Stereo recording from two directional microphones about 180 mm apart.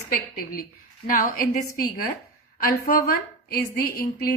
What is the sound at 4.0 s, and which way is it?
Speech, 55° left (ahead or behind).